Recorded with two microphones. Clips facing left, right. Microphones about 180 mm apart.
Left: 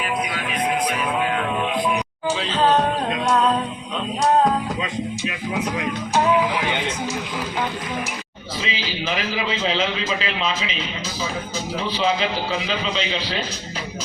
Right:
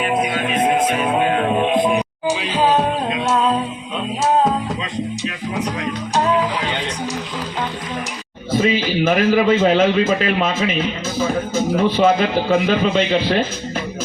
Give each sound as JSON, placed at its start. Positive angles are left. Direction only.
{"t": 0.0, "sound": "music", "side_deg": -25}
{"t": 2.4, "sound": "music", "side_deg": -10}
{"t": 5.5, "sound": "music", "side_deg": 0}
{"t": 6.2, "sound": "music", "side_deg": 10}
{"t": 8.5, "sound": "a man's voice", "side_deg": -50}